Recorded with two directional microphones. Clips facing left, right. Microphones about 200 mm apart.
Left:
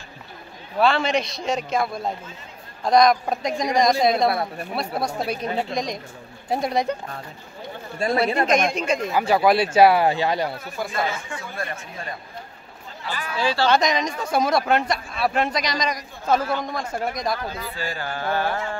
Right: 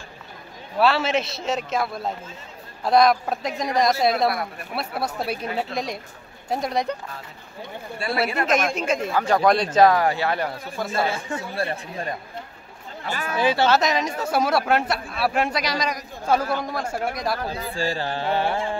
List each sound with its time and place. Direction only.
0.7 s a man's voice: 5° right (ahead or behind)
4.3 s speech: 30° left (ahead or behind)
5.0 s a man's voice: 5° right (ahead or behind)
8.0 s a man's voice: 40° left (ahead or behind)
8.7 s a man's voice: 5° right (ahead or behind)
9.1 s speech: 5° left (ahead or behind)
10.9 s speech: 30° right (ahead or behind)
13.0 s speech: 50° right (ahead or behind)
13.4 s music: 20° right (ahead or behind)
13.7 s speech: 5° right (ahead or behind)
17.5 s music: 30° right (ahead or behind)